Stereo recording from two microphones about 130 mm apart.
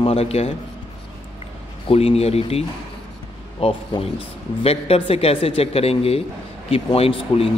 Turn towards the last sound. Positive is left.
turn(degrees=50)  # may be behind; listen again after turning